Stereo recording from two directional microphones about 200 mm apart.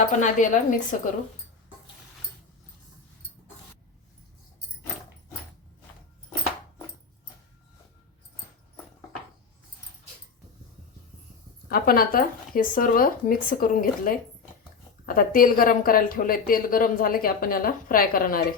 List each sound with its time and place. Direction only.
0.2 s a woman's voice: 40° left (ahead or behind)
11.7 s a woman's voice: 45° left (ahead or behind)